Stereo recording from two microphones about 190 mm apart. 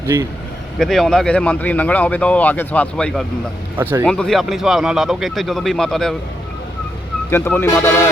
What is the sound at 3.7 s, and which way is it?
Speech, 10° right (ahead or behind).